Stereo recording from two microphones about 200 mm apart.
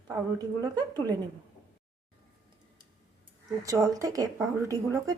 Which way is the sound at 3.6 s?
15° right (ahead or behind).